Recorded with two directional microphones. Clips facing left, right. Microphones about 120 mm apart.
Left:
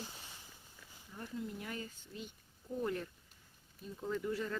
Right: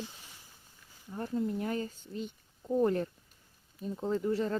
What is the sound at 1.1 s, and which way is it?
Speech, 45° right (ahead or behind).